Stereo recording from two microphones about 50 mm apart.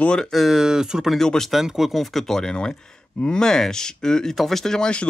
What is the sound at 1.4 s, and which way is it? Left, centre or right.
Speech, centre.